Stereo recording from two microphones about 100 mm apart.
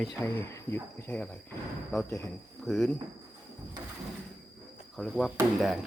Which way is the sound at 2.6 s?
Centre (ahead or behind).